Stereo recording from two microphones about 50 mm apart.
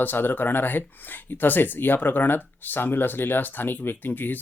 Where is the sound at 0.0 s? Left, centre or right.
Left.